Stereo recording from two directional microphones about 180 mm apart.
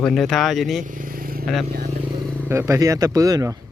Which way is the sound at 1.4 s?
Centre (ahead or behind).